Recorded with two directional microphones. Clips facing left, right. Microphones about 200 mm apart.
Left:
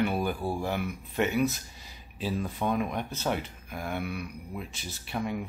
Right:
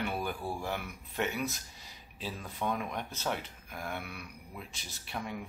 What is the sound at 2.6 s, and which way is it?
Speech, 35° left (ahead or behind).